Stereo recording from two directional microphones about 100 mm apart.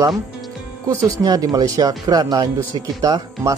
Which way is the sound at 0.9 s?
35° right (ahead or behind).